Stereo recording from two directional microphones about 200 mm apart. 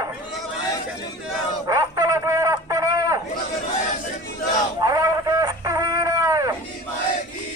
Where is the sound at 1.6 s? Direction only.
15° right (ahead or behind).